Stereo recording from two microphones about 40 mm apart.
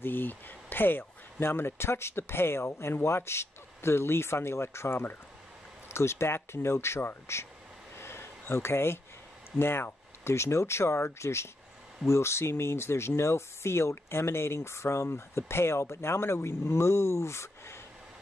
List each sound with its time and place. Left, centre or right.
0.0 s speech: left
5.9 s speech: left
8.0 s a sound: left
9.6 s speech: left